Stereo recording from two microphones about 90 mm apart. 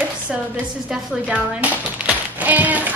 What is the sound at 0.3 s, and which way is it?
A woman's voice, 10° right (ahead or behind).